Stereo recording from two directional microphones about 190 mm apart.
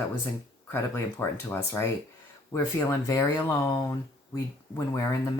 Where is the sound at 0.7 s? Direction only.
10° left (ahead or behind).